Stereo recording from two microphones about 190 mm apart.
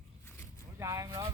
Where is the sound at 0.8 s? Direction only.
15° right (ahead or behind).